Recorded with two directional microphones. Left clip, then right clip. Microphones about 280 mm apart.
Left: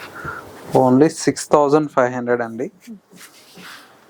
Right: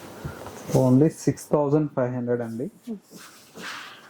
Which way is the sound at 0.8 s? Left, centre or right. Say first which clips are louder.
Left 7 dB; centre.